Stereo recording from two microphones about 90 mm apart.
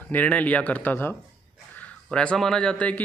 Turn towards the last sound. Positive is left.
turn(degrees=15)  # may be behind; listen again after turning